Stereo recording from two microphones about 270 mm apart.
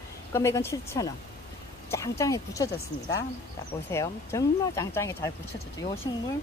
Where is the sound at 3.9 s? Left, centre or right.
Centre.